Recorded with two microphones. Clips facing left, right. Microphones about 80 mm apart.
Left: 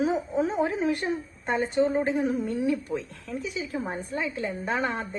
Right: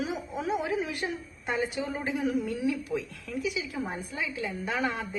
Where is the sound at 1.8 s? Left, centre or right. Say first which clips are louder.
Left 10 dB; left.